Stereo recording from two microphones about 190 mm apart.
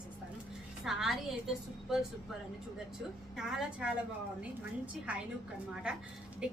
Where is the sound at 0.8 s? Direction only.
Centre (ahead or behind).